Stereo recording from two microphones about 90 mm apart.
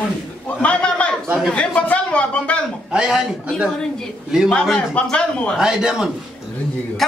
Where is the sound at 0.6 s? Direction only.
15° left (ahead or behind).